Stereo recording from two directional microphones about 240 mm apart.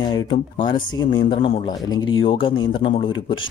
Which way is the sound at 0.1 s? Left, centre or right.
Centre.